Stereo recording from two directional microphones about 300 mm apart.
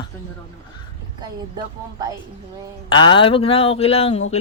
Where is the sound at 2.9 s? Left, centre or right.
Centre.